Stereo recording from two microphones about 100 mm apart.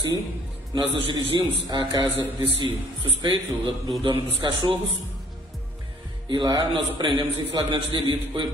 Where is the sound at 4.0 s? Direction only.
55° right (ahead or behind).